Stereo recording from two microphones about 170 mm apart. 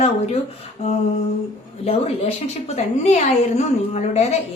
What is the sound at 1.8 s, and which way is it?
Speech, 40° left (ahead or behind).